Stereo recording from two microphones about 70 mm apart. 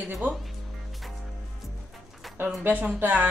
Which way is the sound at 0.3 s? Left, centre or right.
Centre.